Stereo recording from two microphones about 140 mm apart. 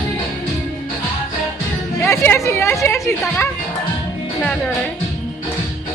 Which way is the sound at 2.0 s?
15° left (ahead or behind).